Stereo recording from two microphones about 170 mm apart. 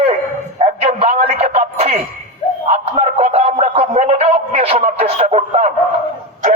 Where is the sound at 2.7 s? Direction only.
40° right (ahead or behind).